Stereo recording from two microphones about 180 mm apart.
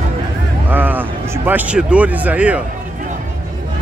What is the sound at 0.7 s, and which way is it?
Speech, 10° right (ahead or behind).